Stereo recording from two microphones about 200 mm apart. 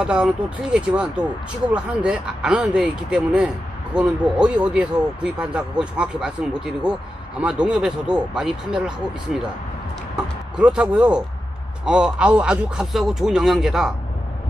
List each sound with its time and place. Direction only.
0.0 s speech: 5° right (ahead or behind)
10.5 s speech: 5° right (ahead or behind)